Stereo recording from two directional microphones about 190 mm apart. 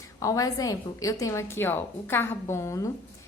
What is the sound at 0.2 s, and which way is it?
A woman's voice, 15° left (ahead or behind).